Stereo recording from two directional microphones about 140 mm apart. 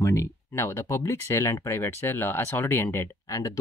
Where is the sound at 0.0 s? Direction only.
20° left (ahead or behind).